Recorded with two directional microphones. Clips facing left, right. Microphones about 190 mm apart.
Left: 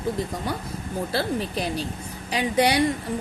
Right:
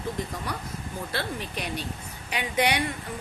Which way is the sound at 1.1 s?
35° left (ahead or behind).